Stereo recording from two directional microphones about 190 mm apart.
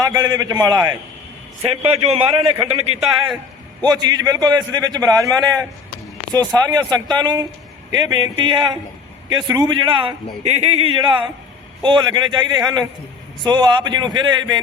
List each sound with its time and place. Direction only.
0.0 s a man's voice: 20° right (ahead or behind)
1.6 s a man's voice: 30° right (ahead or behind)
3.8 s a man's voice: 20° right (ahead or behind)